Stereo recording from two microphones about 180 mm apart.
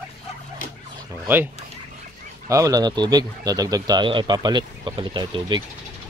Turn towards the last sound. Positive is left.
turn(degrees=-25)  # may be behind; listen again after turning